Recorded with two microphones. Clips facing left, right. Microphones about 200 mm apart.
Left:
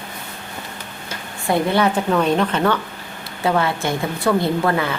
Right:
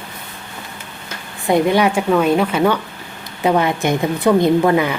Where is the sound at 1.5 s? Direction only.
15° right (ahead or behind).